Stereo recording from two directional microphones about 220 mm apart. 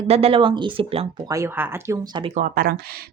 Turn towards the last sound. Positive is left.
turn(degrees=-45)  # may be behind; listen again after turning